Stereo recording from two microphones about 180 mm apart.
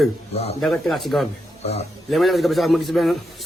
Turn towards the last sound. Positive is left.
turn(degrees=0)  # may be behind; listen again after turning